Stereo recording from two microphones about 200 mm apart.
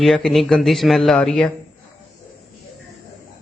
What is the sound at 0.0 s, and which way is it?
Speech, centre (ahead or behind).